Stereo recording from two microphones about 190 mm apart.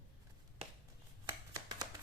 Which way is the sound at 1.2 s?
20° right (ahead or behind).